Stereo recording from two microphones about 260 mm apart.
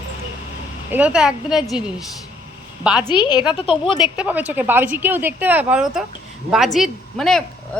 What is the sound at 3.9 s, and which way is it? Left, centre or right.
A woman's voice, centre.